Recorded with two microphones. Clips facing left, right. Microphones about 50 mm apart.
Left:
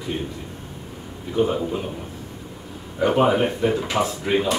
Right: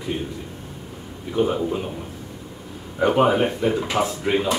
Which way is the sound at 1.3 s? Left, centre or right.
Centre.